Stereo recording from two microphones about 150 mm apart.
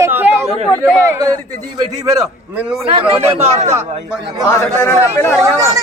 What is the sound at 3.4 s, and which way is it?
Speech, 45° right (ahead or behind).